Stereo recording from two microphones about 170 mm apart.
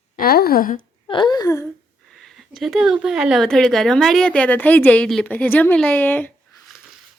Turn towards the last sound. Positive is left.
turn(degrees=10)  # may be behind; listen again after turning